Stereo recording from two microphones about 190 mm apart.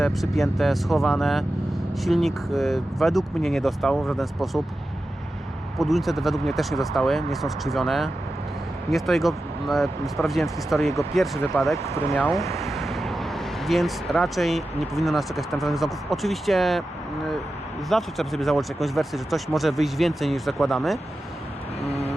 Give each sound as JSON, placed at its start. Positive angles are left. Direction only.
{"t": 0.0, "sound": "speech", "side_deg": 0}
{"t": 5.7, "sound": "speech", "side_deg": 0}
{"t": 17.8, "sound": "speech", "side_deg": 0}
{"t": 21.8, "sound": "vehicle", "side_deg": 35}